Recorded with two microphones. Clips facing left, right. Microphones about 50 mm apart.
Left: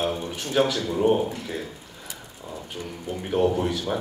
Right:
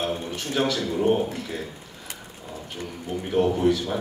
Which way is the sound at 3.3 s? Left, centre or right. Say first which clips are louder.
Right 2 dB; centre.